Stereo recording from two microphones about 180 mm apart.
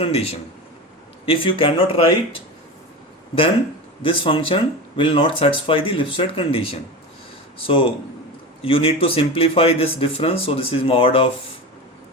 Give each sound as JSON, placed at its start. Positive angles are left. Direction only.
{"t": 0.0, "sound": "speech", "side_deg": 35}
{"t": 4.0, "sound": "speech", "side_deg": 30}